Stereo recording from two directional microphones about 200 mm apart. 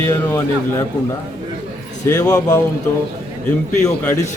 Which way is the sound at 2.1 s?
20° left (ahead or behind).